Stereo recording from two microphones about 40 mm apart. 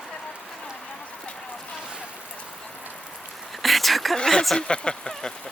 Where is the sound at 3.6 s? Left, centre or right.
Centre.